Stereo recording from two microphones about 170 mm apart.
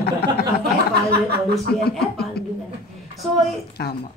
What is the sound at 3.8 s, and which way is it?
Speech, 70° left (ahead or behind).